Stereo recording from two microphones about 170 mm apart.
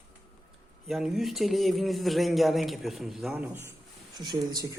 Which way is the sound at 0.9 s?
Centre (ahead or behind).